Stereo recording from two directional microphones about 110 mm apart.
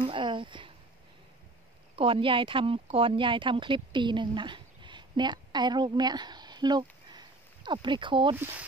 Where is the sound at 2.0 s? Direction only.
55° right (ahead or behind).